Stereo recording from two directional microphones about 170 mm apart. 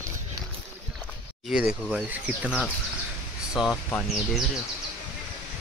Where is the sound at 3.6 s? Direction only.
5° right (ahead or behind).